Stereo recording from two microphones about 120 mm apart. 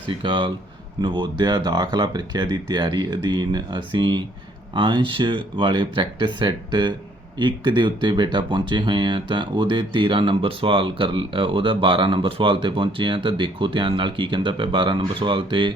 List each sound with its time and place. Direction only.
0.1 s speech: 45° right (ahead or behind)